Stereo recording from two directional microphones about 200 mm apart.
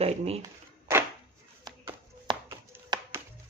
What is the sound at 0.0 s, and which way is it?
Speech, 30° right (ahead or behind).